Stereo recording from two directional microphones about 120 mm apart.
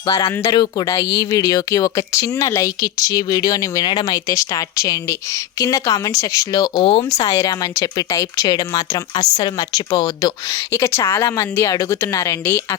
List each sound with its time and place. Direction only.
0.1 s speech: 30° left (ahead or behind)
7.3 s speech: 30° left (ahead or behind)
10.7 s speech: 20° left (ahead or behind)